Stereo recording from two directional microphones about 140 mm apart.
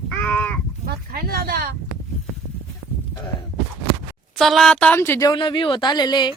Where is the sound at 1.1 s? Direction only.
90° right.